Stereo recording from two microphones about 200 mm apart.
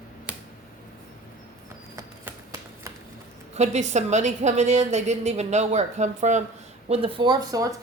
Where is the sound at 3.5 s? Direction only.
35° right (ahead or behind).